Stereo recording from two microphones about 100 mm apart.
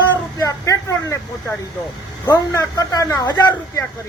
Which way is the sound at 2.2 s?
35° left (ahead or behind).